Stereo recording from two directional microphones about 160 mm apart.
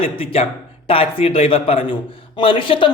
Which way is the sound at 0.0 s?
35° left (ahead or behind).